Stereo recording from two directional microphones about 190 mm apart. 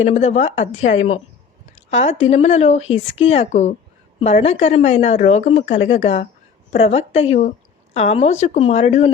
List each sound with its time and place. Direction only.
0.0 s speech: 35° left (ahead or behind)
1.7 s a sound: 35° left (ahead or behind)
2.2 s speech: 35° left (ahead or behind)